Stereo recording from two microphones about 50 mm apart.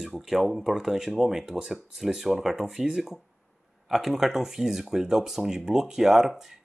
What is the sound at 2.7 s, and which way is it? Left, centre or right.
Speech, centre.